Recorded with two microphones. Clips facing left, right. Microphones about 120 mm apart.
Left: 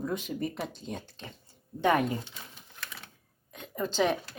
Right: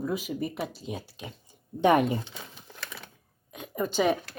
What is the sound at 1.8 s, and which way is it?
Speech, 20° right (ahead or behind).